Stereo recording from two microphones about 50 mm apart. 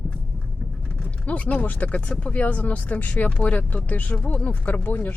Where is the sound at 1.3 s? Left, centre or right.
Left.